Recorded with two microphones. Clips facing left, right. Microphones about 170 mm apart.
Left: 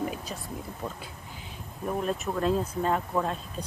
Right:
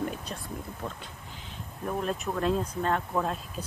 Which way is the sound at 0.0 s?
5° left (ahead or behind).